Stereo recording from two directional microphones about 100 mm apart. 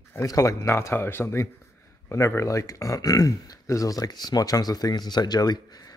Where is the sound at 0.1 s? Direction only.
30° left (ahead or behind).